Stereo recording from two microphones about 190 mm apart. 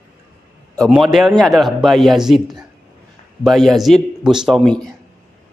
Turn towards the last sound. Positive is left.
turn(degrees=0)  # may be behind; listen again after turning